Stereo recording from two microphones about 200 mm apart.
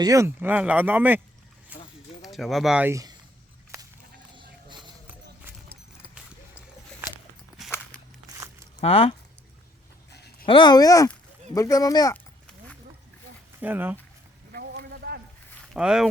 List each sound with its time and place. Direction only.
0.0 s speech: 15° right (ahead or behind)
1.7 s a sound: 5° right (ahead or behind)
2.2 s speech: centre (ahead or behind); by 3.2 s 15° right (ahead or behind)
3.7 s a sound: 15° right (ahead or behind)
8.8 s speech: 30° left (ahead or behind)
10.1 s a sound: 55° left (ahead or behind)
10.4 s speech: 25° left (ahead or behind)
13.6 s speech: 10° right (ahead or behind)
14.5 s boat: 55° right (ahead or behind)
15.7 s speech: 5° right (ahead or behind)